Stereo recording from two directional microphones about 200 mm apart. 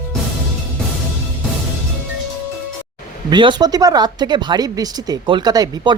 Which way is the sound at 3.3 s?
20° right (ahead or behind).